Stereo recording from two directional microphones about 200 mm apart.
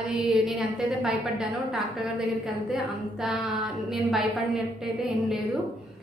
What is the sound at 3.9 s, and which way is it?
A woman's voice, centre (ahead or behind).